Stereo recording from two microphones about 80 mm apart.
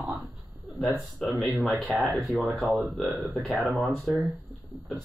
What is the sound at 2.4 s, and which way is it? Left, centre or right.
Speech, right.